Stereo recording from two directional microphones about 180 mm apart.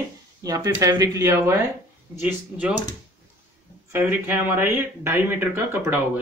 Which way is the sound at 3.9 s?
10° right (ahead or behind).